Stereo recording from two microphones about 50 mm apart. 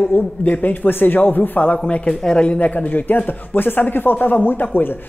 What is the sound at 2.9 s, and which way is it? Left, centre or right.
Speech, left.